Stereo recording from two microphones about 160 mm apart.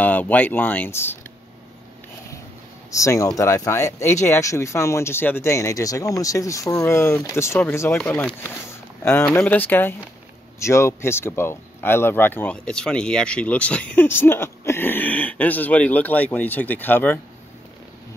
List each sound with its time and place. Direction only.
0.0 s speech: 10° left (ahead or behind)
2.9 s speech: 20° left (ahead or behind)